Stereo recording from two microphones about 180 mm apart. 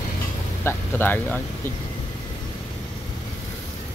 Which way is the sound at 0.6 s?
10° left (ahead or behind).